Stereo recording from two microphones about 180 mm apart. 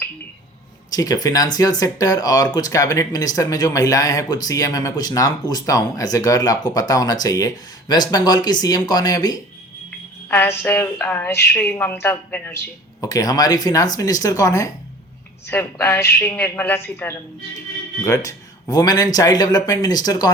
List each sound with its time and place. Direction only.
0.9 s speech: 20° left (ahead or behind)